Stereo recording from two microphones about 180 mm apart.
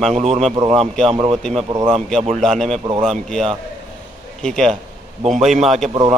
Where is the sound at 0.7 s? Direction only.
Centre (ahead or behind).